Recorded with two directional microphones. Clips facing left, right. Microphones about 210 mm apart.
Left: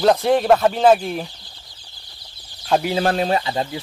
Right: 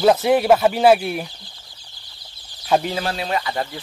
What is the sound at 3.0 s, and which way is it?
Speech, 50° left (ahead or behind).